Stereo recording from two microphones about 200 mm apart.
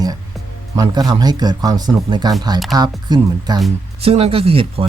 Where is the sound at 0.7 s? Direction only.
20° right (ahead or behind).